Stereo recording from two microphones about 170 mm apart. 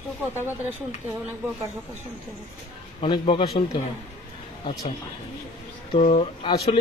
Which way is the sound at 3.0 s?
30° left (ahead or behind).